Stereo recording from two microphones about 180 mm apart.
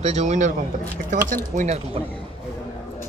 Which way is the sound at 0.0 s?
40° right (ahead or behind).